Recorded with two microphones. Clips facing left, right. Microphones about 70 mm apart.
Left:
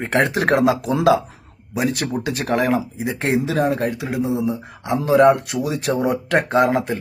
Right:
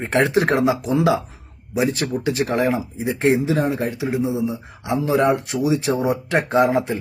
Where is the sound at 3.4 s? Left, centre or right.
Left.